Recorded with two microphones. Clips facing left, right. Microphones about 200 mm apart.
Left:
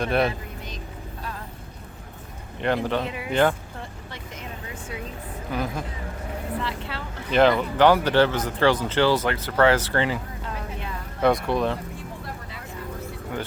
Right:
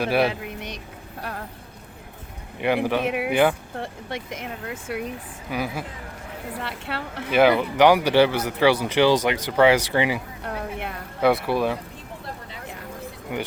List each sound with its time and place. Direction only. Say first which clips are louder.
0.0 s speech: right 1 dB; 5° right (ahead or behind)
0.3 s speech: right 2 dB; 75° right (ahead or behind)
1.2 s vehicle: right 4 dB; 65° right (ahead or behind)
2.6 s speech: right 2 dB; 10° right (ahead or behind)
3.8 s speech: right 7 dB; 65° right (ahead or behind)
5.0 s speech: right 1 dB; 10° right (ahead or behind)
6.6 s speech: even; 60° right (ahead or behind)
7.3 s speech: right 1 dB; 10° right (ahead or behind)
10.4 s speech: right 3 dB; 65° right (ahead or behind)
11.2 s speech: right 1 dB; 5° right (ahead or behind)